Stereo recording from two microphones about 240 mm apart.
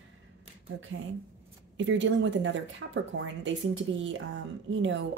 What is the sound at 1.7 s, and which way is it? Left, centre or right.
Speech, right.